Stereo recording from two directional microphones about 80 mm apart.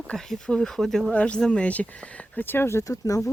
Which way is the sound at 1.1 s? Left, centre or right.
Centre.